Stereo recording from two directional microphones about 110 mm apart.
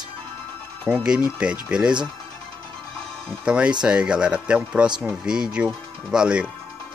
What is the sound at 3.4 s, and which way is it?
Speech, 10° right (ahead or behind).